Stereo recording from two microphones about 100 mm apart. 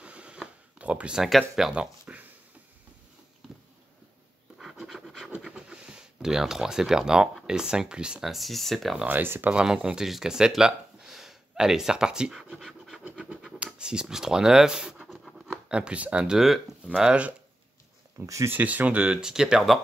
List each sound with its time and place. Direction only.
0.0 s a sound: 10° right (ahead or behind)
4.6 s scratch: 5° right (ahead or behind)
9.0 s speech: 20° right (ahead or behind)
9.5 s speech: 10° right (ahead or behind)
13.2 s scratch: 10° right (ahead or behind)
15.0 s speech: centre (ahead or behind)
18.2 s speech: 35° right (ahead or behind)
18.5 s speech: 15° right (ahead or behind)